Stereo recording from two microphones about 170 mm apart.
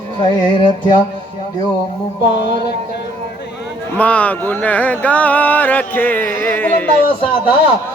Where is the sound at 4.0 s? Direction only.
10° left (ahead or behind).